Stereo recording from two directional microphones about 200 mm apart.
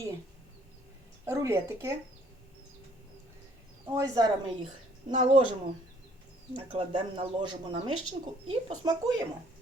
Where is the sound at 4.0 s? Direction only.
15° right (ahead or behind).